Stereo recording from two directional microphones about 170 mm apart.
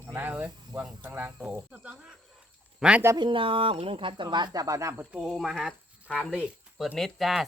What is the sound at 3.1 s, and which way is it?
Speech, 30° right (ahead or behind).